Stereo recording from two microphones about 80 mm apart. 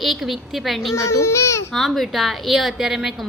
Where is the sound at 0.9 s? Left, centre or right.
Left.